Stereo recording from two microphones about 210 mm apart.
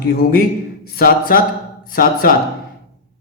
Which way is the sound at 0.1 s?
45° left (ahead or behind).